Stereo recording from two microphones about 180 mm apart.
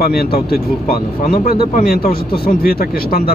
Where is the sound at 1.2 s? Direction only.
50° left (ahead or behind).